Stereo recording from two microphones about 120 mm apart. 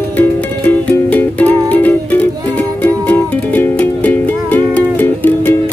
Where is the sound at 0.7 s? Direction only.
15° left (ahead or behind).